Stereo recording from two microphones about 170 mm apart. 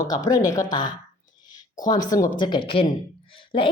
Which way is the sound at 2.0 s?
20° left (ahead or behind).